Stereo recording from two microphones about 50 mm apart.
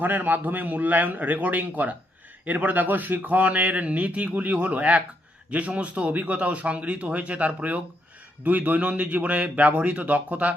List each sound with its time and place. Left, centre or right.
0.0 s a man's voice: right